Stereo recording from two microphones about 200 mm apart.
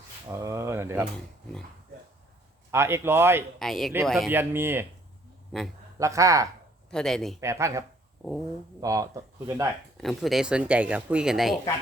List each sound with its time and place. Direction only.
0.3 s a sound: 15° right (ahead or behind)
2.7 s speech: 10° right (ahead or behind)
3.6 s speech: centre (ahead or behind)
4.3 s speech: 10° right (ahead or behind)
5.5 s speech: centre (ahead or behind)
6.0 s speech: 15° right (ahead or behind)
6.9 s speech: centre (ahead or behind)
7.4 s speech: 15° right (ahead or behind)
8.2 s speech: centre (ahead or behind)
8.8 s speech: 15° right (ahead or behind)
10.0 s speech: centre (ahead or behind)